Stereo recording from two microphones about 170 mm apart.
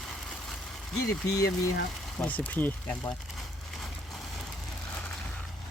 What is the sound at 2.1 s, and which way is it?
Speech, 10° left (ahead or behind).